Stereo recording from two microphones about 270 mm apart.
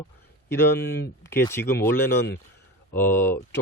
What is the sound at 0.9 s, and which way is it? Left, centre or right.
Speech, left.